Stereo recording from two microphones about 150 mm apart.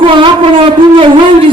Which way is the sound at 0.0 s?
35° right (ahead or behind).